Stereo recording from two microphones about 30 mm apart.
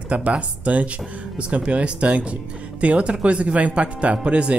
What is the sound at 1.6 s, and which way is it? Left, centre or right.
Speech, right.